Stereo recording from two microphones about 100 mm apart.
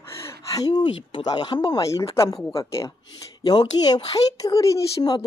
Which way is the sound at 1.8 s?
35° left (ahead or behind).